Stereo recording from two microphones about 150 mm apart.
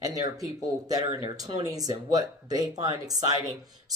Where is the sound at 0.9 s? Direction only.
35° right (ahead or behind).